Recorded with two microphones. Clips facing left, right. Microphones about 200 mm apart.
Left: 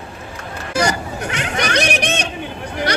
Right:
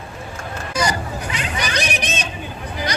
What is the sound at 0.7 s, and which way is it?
Hubbub, 65° left (ahead or behind).